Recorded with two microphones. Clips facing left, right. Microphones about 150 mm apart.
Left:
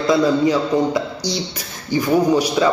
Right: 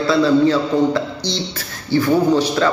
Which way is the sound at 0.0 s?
15° left (ahead or behind).